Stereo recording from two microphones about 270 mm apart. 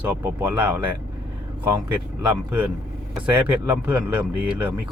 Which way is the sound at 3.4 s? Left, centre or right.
Centre.